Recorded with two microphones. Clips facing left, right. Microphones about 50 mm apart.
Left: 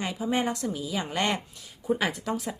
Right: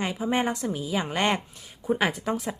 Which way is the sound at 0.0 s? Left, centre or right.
Right.